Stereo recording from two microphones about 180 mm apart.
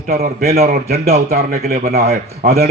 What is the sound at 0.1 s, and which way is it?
A man's voice, 60° right (ahead or behind).